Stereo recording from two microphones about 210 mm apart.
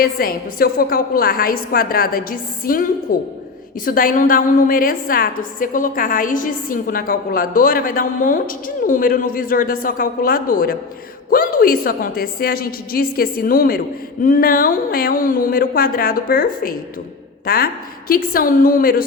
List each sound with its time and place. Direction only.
0.0 s a woman's voice: 45° left (ahead or behind)